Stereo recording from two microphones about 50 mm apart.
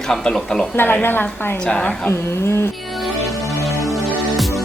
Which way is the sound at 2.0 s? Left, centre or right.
Left.